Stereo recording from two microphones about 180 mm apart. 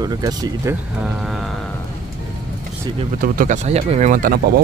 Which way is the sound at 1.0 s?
Centre (ahead or behind).